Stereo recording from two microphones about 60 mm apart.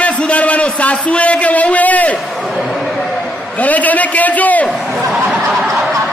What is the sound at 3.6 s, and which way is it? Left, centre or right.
A man's voice, left.